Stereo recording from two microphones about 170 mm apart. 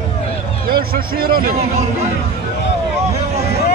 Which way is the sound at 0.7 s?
60° right (ahead or behind).